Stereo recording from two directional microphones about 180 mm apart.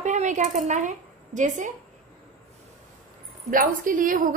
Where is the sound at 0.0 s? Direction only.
40° right (ahead or behind).